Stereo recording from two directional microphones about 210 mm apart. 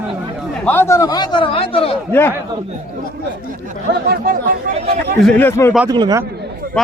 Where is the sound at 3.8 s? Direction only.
50° right (ahead or behind).